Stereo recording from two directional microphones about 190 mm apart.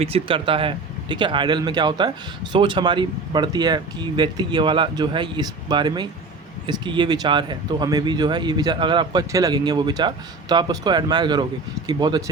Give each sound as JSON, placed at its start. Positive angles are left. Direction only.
{"t": 0.0, "sound": "speech", "side_deg": -30}